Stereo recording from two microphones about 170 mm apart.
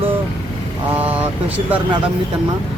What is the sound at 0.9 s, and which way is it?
Speech, 10° right (ahead or behind).